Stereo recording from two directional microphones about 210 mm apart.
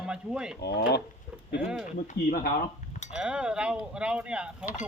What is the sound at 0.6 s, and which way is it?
Speech, 50° left (ahead or behind).